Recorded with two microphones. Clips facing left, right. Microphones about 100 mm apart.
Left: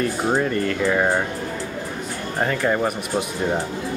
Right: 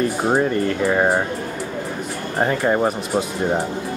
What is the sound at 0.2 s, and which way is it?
Speech, 25° right (ahead or behind).